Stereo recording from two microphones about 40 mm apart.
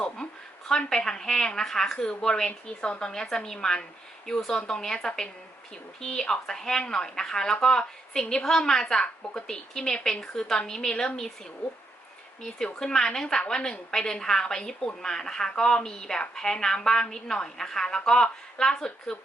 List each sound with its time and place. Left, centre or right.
0.9 s a woman's voice: centre
12.4 s a woman's voice: centre